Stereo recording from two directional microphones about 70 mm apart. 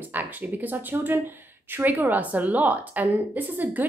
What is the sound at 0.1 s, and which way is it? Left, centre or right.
Speech, right.